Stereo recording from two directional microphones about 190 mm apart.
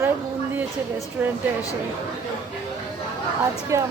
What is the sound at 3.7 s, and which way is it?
Speech, 15° right (ahead or behind).